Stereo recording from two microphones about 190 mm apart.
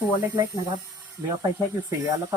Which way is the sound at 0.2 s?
15° right (ahead or behind).